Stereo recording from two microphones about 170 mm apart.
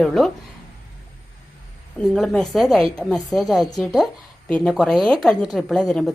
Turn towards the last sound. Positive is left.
turn(degrees=5)  # may be behind; listen again after turning